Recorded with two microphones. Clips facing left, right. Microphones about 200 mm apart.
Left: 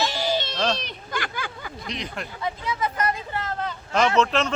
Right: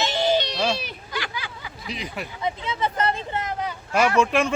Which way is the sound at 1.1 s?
50° left (ahead or behind).